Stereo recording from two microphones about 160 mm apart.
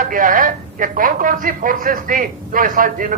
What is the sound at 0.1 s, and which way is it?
Speech, 60° right (ahead or behind).